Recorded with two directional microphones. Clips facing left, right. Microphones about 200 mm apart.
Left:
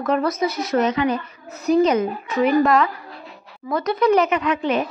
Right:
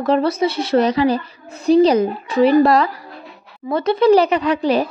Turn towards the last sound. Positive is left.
turn(degrees=-35)  # may be behind; listen again after turning